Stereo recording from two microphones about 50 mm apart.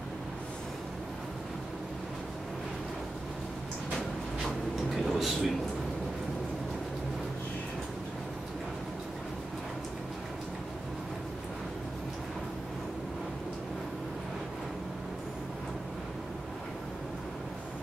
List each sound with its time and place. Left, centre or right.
4.5 s vehicle: centre